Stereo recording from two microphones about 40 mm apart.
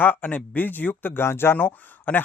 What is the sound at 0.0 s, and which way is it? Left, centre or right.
Speech, left.